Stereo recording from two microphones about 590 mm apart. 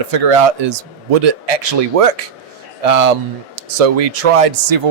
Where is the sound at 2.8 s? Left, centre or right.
Right.